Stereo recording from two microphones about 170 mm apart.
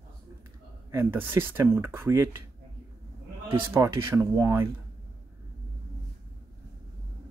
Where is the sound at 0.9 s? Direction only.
15° right (ahead or behind).